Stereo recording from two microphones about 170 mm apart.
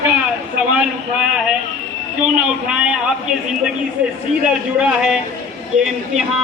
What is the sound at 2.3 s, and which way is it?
Speech, 5° right (ahead or behind).